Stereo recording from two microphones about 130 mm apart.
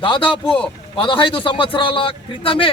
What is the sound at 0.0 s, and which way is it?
A man's voice, 40° left (ahead or behind).